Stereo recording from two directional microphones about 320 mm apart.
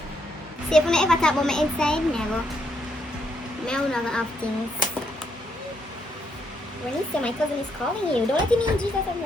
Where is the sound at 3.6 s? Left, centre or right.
Centre.